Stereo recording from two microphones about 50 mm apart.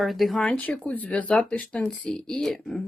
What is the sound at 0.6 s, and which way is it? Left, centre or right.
A woman's voice, left.